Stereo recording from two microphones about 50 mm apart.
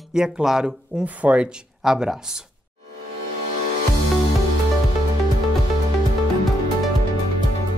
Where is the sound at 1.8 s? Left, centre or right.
Centre.